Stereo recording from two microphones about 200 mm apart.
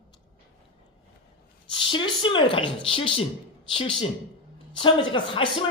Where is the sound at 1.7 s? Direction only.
25° left (ahead or behind).